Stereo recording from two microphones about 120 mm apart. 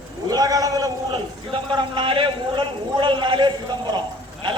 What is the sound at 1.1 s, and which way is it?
A man's voice, 40° right (ahead or behind).